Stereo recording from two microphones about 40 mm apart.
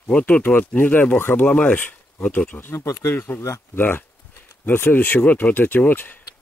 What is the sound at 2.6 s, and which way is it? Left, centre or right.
Speech, left.